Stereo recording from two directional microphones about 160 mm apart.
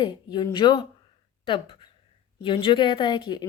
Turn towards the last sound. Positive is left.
turn(degrees=30)  # may be behind; listen again after turning